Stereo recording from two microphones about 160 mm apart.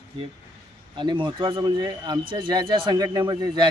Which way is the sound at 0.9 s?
30° right (ahead or behind).